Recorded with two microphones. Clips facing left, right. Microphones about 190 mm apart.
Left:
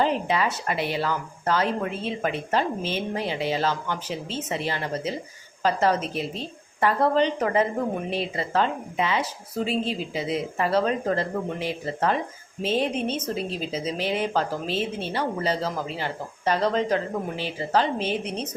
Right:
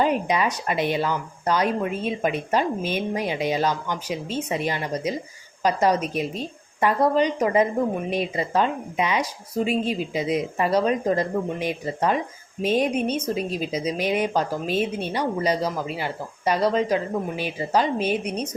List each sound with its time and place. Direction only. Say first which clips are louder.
0.0 s speech: right 2 dB; 15° right (ahead or behind)